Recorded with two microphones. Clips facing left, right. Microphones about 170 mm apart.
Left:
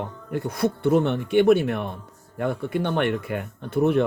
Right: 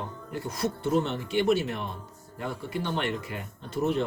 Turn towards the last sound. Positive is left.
turn(degrees=60)  # may be behind; listen again after turning